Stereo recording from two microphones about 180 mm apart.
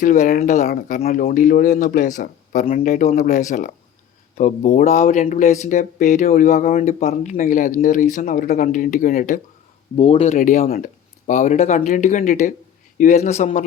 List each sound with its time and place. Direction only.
0.0 s speech: 45° left (ahead or behind)
0.7 s speech: 55° left (ahead or behind)
10.0 s a man's voice: 35° left (ahead or behind)
10.3 s a man's voice: 45° left (ahead or behind)